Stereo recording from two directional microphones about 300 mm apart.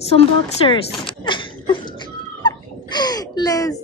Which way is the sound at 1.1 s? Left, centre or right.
Centre.